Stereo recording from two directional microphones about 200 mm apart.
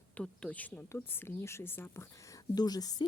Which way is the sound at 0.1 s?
5° left (ahead or behind).